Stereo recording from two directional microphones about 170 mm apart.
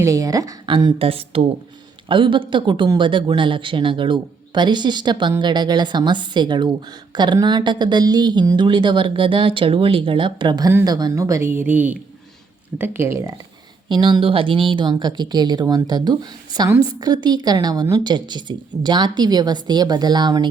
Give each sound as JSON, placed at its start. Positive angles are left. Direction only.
{"t": 0.0, "sound": "a woman's voice", "side_deg": -20}
{"t": 12.8, "sound": "speech", "side_deg": -15}
{"t": 13.8, "sound": "a woman's voice", "side_deg": -30}